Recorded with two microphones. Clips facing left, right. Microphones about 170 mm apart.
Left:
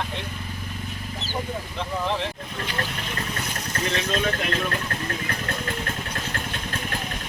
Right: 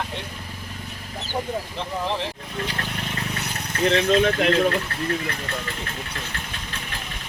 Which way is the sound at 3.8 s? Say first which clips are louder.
Right 8 dB; 60° right (ahead or behind).